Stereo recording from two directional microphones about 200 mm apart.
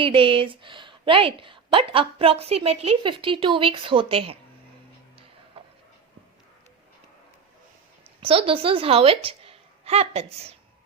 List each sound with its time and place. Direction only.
0.0 s a woman's voice: 25° right (ahead or behind)
5.1 s music: 25° right (ahead or behind)
8.2 s a woman's voice: 25° right (ahead or behind)